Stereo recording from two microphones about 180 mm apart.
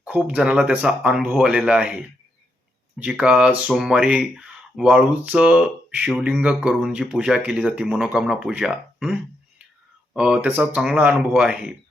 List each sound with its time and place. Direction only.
0.0 s speech: 5° right (ahead or behind)